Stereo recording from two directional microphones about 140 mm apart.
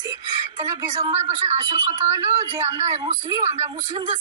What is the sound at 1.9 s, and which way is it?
Speech, 20° right (ahead or behind).